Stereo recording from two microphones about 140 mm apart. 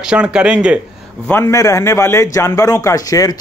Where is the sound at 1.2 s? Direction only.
15° left (ahead or behind).